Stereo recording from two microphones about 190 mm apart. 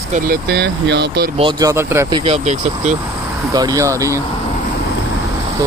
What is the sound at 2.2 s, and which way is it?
Speech, 35° right (ahead or behind).